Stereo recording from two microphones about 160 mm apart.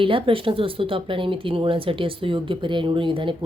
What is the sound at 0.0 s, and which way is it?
A woman's voice, 35° right (ahead or behind).